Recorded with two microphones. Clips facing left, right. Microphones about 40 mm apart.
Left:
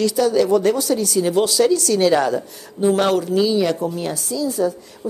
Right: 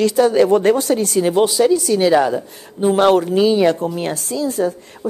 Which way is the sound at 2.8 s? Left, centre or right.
Right.